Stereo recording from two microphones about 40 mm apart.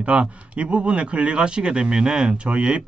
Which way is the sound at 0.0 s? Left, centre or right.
Right.